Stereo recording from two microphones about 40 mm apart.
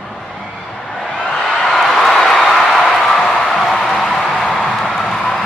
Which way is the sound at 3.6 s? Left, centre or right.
Centre.